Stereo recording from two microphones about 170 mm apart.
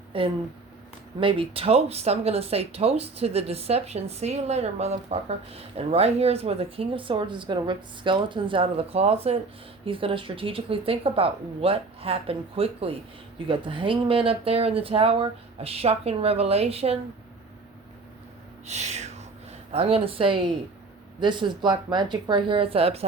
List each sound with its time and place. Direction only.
0.1 s speech: 35° right (ahead or behind)
18.6 s a sound: 40° right (ahead or behind)
21.2 s speech: 25° right (ahead or behind)